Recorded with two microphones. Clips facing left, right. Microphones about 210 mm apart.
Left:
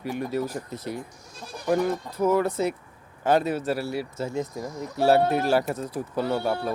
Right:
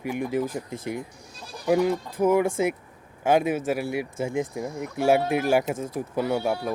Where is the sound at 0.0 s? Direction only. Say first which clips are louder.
Right 2 dB; 15° right (ahead or behind).